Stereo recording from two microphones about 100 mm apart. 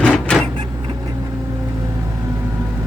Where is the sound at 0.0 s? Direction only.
10° left (ahead or behind).